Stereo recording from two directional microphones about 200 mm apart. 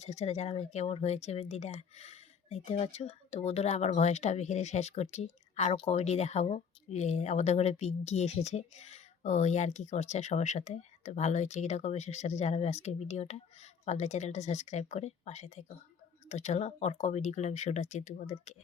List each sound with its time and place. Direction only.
0.0 s speech: 35° left (ahead or behind)